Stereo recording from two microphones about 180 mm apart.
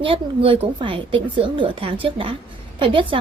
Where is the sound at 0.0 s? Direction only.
30° right (ahead or behind).